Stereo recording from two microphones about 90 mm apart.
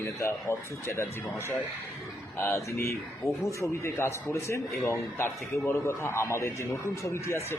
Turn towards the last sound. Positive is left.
turn(degrees=30)  # may be behind; listen again after turning